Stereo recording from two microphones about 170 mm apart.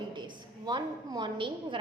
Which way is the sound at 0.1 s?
25° right (ahead or behind).